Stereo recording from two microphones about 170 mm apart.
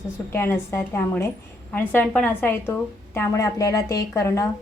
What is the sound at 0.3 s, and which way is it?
A woman's voice, 15° left (ahead or behind).